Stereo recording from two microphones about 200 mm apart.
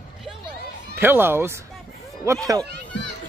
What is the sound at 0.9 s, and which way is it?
Speech, 10° right (ahead or behind).